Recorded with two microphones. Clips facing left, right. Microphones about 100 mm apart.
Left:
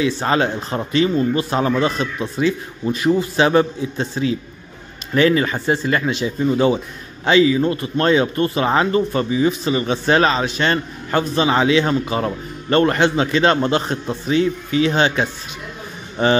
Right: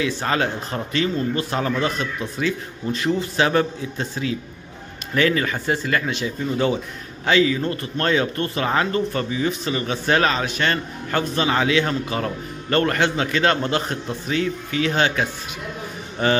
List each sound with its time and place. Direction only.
0.0 s speech: 25° left (ahead or behind)